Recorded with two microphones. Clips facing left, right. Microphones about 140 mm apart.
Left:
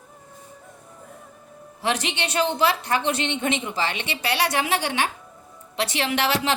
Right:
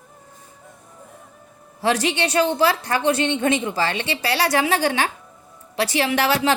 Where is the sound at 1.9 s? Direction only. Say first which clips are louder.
Right 6 dB; 35° right (ahead or behind).